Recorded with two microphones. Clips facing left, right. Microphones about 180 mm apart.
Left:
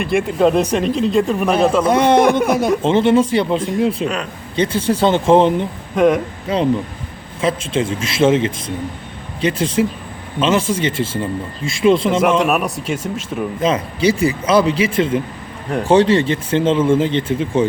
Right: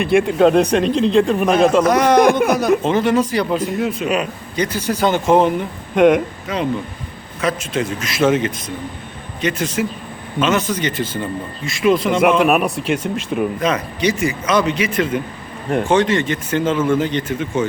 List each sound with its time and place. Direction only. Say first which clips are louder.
0.0 s speech: right 2 dB; centre (ahead or behind)
1.8 s speech: even; 25° left (ahead or behind)
6.0 s speech: right 2 dB; centre (ahead or behind)
6.5 s speech: left 5 dB; 30° left (ahead or behind)
12.1 s speech: right 1 dB; centre (ahead or behind)
13.6 s speech: left 2 dB; 25° left (ahead or behind)